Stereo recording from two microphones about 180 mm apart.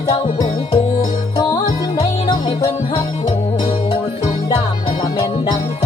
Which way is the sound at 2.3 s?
20° left (ahead or behind).